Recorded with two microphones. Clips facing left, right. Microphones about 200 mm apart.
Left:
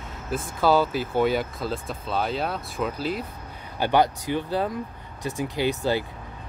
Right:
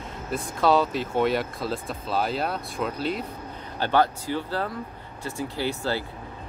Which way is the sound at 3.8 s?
15° left (ahead or behind).